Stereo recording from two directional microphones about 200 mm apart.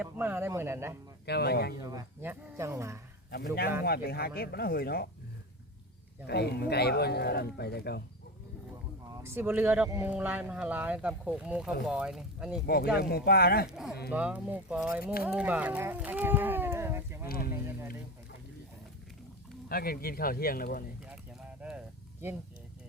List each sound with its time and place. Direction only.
0.0 s speech: 10° right (ahead or behind)
1.2 s speech: 55° left (ahead or behind)
1.9 s speech: 10° right (ahead or behind)
3.3 s a man's voice: 50° left (ahead or behind)
6.2 s a man's voice: 55° left (ahead or behind)
9.0 s speech: 10° right (ahead or behind)
12.6 s a man's voice: 50° left (ahead or behind)
13.7 s speech: centre (ahead or behind)
17.2 s a man's voice: 50° left (ahead or behind)
19.6 s a man's voice: 50° left (ahead or behind)
21.6 s a sound: 5° right (ahead or behind)